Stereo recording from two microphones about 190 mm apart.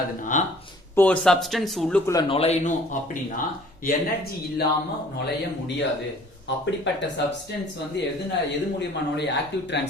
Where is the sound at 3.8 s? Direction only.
55° left (ahead or behind).